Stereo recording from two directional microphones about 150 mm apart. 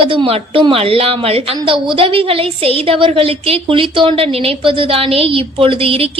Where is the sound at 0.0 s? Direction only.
35° right (ahead or behind).